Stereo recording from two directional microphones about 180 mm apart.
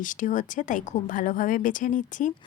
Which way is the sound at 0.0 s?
45° left (ahead or behind).